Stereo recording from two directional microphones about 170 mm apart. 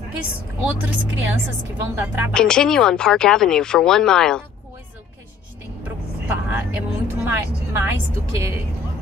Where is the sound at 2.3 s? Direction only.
5° left (ahead or behind).